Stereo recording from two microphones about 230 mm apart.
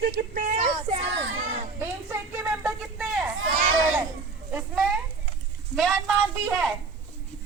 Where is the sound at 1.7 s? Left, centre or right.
Centre.